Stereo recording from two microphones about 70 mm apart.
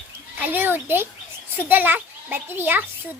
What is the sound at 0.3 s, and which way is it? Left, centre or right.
A child's voice, right.